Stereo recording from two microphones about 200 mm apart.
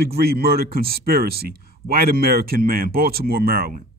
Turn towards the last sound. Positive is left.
turn(degrees=-50)  # may be behind; listen again after turning